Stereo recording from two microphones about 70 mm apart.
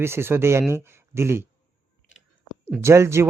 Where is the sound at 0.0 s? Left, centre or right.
Right.